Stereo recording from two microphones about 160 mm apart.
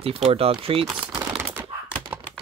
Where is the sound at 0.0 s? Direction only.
35° right (ahead or behind).